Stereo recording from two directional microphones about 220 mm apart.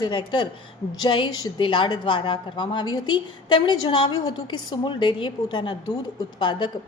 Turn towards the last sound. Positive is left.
turn(degrees=20)  # may be behind; listen again after turning